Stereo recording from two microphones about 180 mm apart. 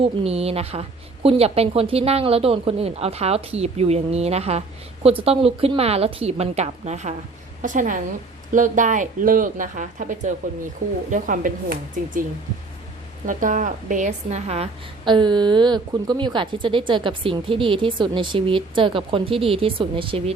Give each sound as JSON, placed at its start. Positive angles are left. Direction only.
{"t": 0.0, "sound": "a woman's voice", "side_deg": -35}
{"t": 13.2, "sound": "a woman's voice", "side_deg": -45}